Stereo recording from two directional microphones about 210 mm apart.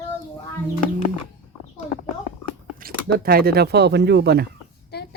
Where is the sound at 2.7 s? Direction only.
45° right (ahead or behind).